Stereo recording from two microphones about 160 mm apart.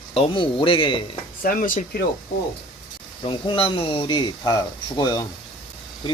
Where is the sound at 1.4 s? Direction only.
60° left (ahead or behind).